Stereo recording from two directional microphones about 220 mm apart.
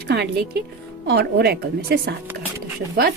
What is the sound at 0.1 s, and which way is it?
A woman's voice, 50° right (ahead or behind).